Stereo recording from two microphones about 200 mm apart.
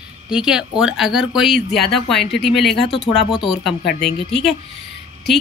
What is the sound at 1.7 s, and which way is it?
Speech, 55° left (ahead or behind).